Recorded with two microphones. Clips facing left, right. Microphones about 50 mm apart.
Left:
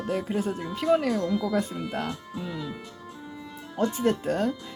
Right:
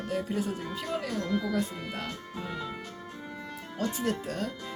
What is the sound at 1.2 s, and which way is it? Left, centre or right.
Speech, right.